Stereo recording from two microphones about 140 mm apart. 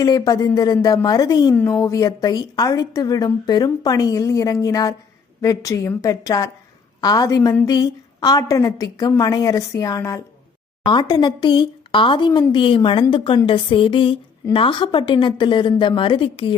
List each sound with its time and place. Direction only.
0.0 s a woman's voice: 25° left (ahead or behind)